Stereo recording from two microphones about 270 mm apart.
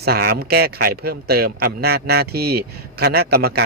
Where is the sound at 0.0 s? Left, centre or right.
Right.